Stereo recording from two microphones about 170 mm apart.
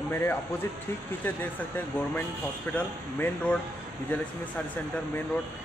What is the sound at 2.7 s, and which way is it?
Speech, 10° left (ahead or behind).